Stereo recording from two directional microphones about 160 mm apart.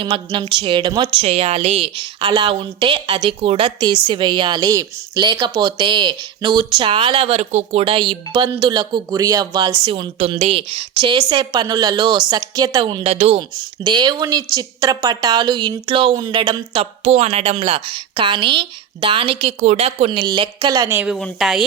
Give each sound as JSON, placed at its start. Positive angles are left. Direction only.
{"t": 0.0, "sound": "a woman's voice", "side_deg": -30}
{"t": 13.8, "sound": "a woman's voice", "side_deg": -30}
{"t": 20.9, "sound": "a woman's voice", "side_deg": -10}